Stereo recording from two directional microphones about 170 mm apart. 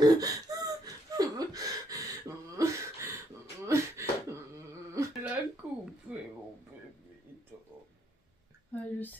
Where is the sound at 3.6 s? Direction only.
15° right (ahead or behind).